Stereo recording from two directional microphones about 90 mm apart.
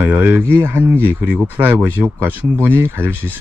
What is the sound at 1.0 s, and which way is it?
Speech, 15° right (ahead or behind).